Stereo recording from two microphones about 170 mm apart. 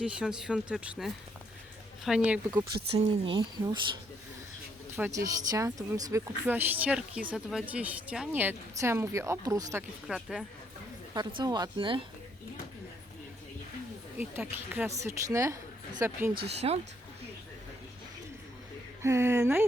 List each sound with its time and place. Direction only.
0.0 s speech: 5° right (ahead or behind)
2.9 s speech: 30° right (ahead or behind)
4.9 s speech: 15° right (ahead or behind)
6.4 s speech: 10° right (ahead or behind)
10.2 s speech: centre (ahead or behind)
11.1 s speech: 25° right (ahead or behind)
14.7 s speech: 15° right (ahead or behind)
16.6 s speech: 40° right (ahead or behind)
19.0 s speech: 15° right (ahead or behind)